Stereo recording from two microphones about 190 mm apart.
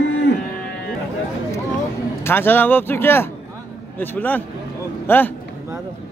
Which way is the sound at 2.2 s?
10° left (ahead or behind).